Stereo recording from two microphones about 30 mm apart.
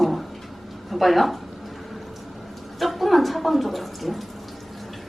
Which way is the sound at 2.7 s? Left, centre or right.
Centre.